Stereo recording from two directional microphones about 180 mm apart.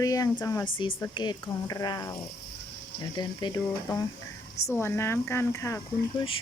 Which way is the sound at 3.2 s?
20° left (ahead or behind).